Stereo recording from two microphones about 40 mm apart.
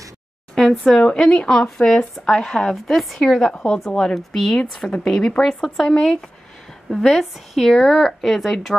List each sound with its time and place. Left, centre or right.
0.6 s a woman's voice: centre
5.0 s a woman's voice: centre
5.9 s speech: centre
7.1 s speech: centre
7.6 s speech: centre